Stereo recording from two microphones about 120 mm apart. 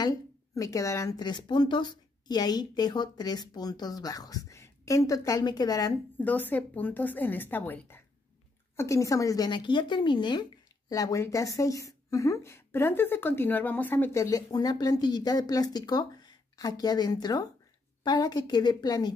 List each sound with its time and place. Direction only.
0.0 s speech: 30° left (ahead or behind)
6.1 s a woman's voice: 15° left (ahead or behind)
9.5 s speech: 40° left (ahead or behind)
10.9 s speech: 30° left (ahead or behind)